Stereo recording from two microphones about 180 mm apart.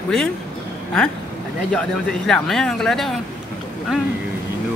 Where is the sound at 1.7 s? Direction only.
5° left (ahead or behind).